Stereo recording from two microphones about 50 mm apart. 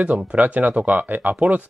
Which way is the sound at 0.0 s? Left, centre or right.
Right.